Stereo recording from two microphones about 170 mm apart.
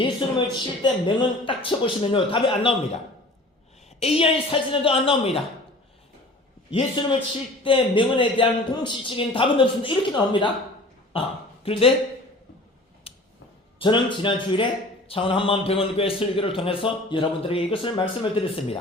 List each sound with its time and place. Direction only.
0.0 s speech: 30° left (ahead or behind)
4.0 s a man's voice: 35° left (ahead or behind)
6.7 s a man's voice: 30° left (ahead or behind)
13.1 s a sound: 35° left (ahead or behind)
13.7 s a man's voice: 30° left (ahead or behind)